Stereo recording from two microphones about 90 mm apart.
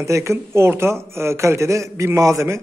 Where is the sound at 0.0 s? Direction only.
35° right (ahead or behind).